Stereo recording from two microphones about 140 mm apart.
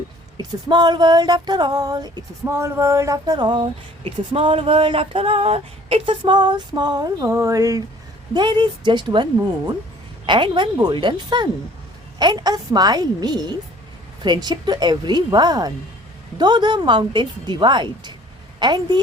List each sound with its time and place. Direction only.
0.3 s speech: 30° right (ahead or behind)
2.5 s a woman's voice: 20° right (ahead or behind)